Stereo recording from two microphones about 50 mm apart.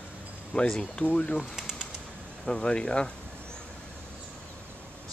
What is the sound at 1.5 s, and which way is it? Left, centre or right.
Bird, centre.